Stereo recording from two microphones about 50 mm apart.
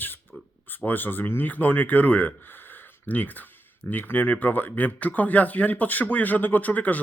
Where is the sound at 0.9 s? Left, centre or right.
Left.